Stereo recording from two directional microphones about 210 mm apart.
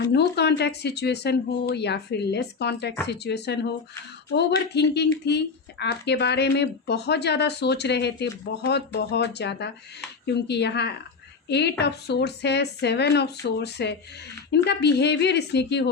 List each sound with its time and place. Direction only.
0.1 s speech: 55° left (ahead or behind)